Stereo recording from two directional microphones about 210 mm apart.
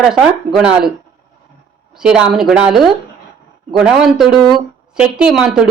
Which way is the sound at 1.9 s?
5° right (ahead or behind).